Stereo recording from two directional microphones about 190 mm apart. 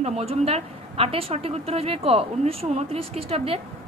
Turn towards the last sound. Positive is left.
turn(degrees=-30)  # may be behind; listen again after turning